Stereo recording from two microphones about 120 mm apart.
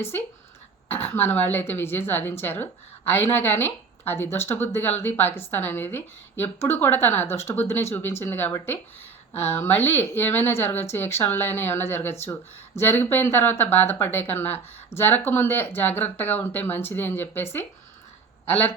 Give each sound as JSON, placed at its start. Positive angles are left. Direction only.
{"t": 0.9, "sound": "a woman's voice", "side_deg": 20}